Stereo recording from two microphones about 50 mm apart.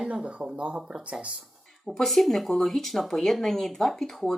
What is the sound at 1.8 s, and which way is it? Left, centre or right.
Speech, centre.